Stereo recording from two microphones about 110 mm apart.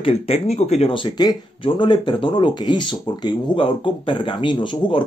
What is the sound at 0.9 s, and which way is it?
Speech, 45° left (ahead or behind).